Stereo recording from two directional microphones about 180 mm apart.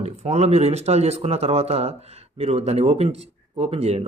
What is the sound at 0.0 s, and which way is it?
Speech, 35° right (ahead or behind).